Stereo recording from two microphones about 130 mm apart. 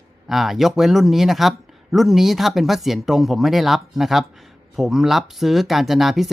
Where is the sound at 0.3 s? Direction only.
Centre (ahead or behind).